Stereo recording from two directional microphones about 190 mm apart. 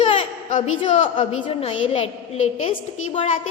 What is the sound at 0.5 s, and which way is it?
A woman's voice, 35° left (ahead or behind).